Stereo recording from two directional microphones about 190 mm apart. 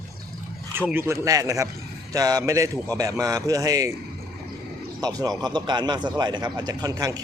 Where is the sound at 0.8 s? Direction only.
10° right (ahead or behind).